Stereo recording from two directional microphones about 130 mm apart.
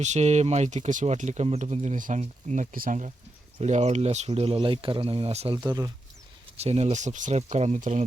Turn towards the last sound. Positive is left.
turn(degrees=-80)